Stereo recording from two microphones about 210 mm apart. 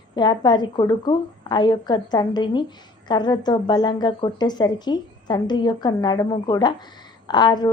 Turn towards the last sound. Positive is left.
turn(degrees=20)  # may be behind; listen again after turning